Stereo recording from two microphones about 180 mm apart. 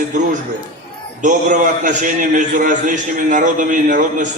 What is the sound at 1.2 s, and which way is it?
A man's voice, 45° right (ahead or behind).